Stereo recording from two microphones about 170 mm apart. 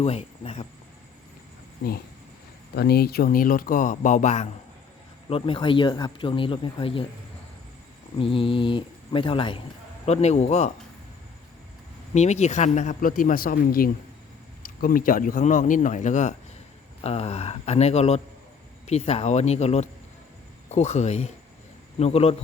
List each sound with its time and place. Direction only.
0.0 s speech: 40° left (ahead or behind)
1.8 s speech: 80° left
2.7 s speech: 65° left (ahead or behind); by 4.4 s 45° left (ahead or behind)
5.3 s speech: 30° left (ahead or behind)
8.2 s speech: 30° left (ahead or behind)
10.1 s speech: 40° left (ahead or behind)
12.1 s speech: 40° left (ahead or behind)